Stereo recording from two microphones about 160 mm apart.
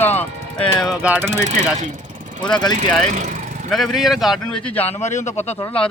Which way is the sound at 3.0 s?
45° right (ahead or behind).